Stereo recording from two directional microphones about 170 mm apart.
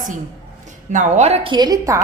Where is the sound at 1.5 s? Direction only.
25° right (ahead or behind).